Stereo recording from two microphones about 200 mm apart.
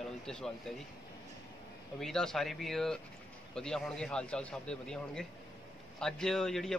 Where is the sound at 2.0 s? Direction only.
5° left (ahead or behind).